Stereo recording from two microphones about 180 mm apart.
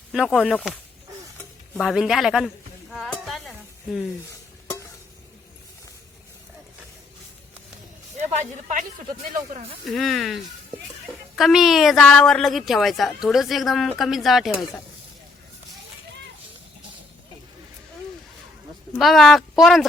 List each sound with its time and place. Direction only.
0.1 s a woman's voice: centre (ahead or behind)
1.8 s a woman's voice: centre (ahead or behind)
2.9 s stir: centre (ahead or behind)
8.2 s speech: 40° right (ahead or behind)
9.8 s a woman's voice: centre (ahead or behind)
18.9 s a woman's voice: centre (ahead or behind)